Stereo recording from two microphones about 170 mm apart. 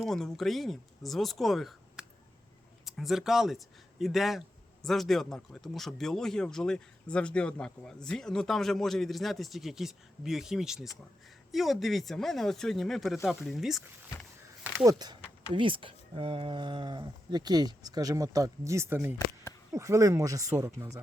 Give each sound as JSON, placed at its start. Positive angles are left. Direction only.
{"t": 0.0, "sound": "speech", "side_deg": 5}
{"t": 14.8, "sound": "speech", "side_deg": -25}